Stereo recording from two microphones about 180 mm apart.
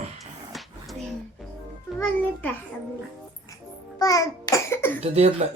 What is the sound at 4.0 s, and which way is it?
Babbling, 20° left (ahead or behind).